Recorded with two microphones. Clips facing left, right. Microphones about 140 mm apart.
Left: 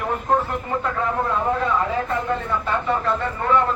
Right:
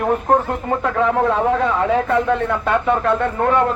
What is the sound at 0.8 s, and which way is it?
A man's voice, 90° right.